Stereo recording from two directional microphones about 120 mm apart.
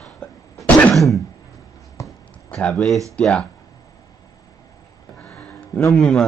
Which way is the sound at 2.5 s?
10° left (ahead or behind).